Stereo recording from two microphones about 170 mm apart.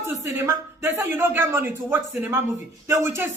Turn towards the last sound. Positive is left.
turn(degrees=-15)  # may be behind; listen again after turning